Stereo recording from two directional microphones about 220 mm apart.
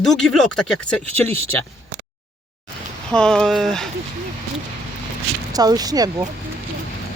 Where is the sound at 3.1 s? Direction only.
5° left (ahead or behind).